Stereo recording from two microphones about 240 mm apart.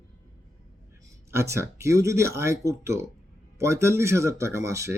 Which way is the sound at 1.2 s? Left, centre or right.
Centre.